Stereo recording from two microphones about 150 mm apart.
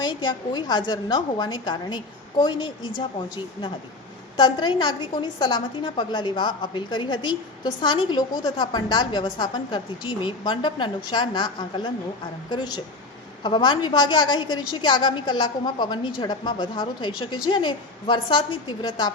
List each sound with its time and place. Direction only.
0.0 s a woman's voice: 30° left (ahead or behind)